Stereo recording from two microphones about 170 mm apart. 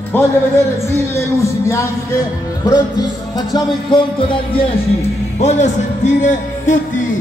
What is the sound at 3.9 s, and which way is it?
Music, 30° left (ahead or behind).